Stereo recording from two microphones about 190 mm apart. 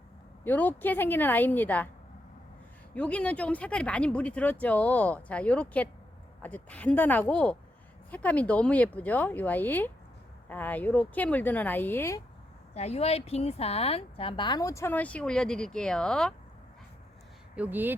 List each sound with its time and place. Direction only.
0.4 s speech: 10° left (ahead or behind)
2.9 s speech: 5° left (ahead or behind)
12.7 s a woman's voice: 35° left (ahead or behind); by 16.3 s 5° left (ahead or behind)
17.5 s speech: 10° right (ahead or behind)